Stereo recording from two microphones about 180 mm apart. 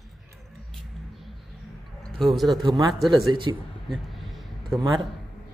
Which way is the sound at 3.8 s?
Centre (ahead or behind).